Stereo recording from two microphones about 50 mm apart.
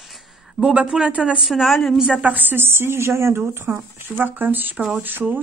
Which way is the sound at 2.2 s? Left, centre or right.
Right.